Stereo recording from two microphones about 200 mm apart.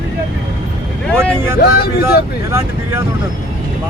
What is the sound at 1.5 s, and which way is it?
Speech, 50° left (ahead or behind).